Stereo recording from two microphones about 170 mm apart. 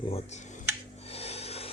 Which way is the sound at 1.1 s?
35° left (ahead or behind).